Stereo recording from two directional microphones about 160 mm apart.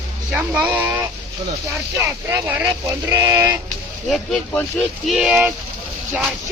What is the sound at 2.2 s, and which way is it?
Speech, 15° right (ahead or behind).